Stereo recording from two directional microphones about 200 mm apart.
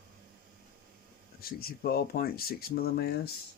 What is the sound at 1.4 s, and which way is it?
Speech, 50° left (ahead or behind).